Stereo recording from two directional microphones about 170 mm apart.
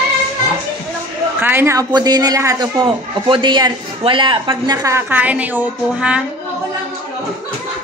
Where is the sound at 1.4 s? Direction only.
15° right (ahead or behind).